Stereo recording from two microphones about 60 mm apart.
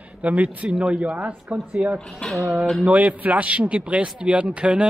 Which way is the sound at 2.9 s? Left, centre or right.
Right.